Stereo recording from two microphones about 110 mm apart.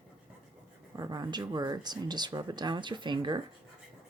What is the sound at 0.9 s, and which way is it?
Speech, 35° right (ahead or behind).